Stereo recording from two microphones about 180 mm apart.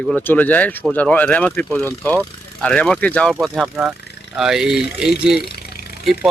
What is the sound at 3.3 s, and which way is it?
Speech, 5° right (ahead or behind).